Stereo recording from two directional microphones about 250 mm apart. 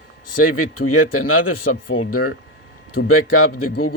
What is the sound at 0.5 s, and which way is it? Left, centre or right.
Speech, left.